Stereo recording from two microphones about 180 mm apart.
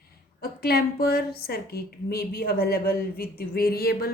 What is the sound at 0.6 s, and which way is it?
A woman's voice, 60° left (ahead or behind).